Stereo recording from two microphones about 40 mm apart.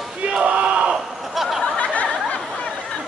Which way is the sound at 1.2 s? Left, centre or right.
Centre.